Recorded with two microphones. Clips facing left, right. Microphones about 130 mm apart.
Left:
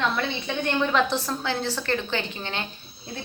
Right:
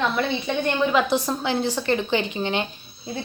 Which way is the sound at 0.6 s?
5° right (ahead or behind).